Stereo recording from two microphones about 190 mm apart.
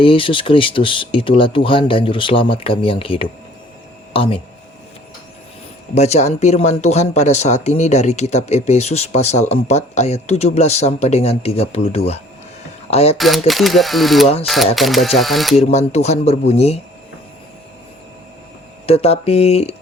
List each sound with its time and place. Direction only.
0.0 s speech: 30° left (ahead or behind)
5.9 s speech: 35° left (ahead or behind)
13.1 s speech: centre (ahead or behind)
15.5 s speech: 35° left (ahead or behind)
18.9 s speech: 30° left (ahead or behind)